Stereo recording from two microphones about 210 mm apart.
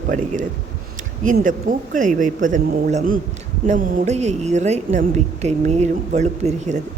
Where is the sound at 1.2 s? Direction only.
40° right (ahead or behind).